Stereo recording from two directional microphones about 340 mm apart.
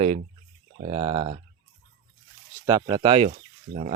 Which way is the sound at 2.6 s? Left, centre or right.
Centre.